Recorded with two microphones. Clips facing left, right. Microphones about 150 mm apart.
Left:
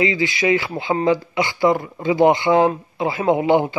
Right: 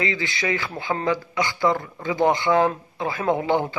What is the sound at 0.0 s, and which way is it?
A man's voice, 20° left (ahead or behind).